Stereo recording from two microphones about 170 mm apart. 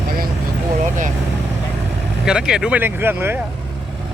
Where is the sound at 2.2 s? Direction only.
5° right (ahead or behind).